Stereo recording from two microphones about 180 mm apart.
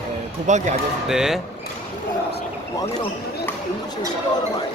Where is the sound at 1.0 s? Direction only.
5° right (ahead or behind).